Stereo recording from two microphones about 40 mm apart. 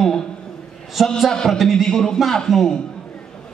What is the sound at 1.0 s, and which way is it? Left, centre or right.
A man's voice, centre.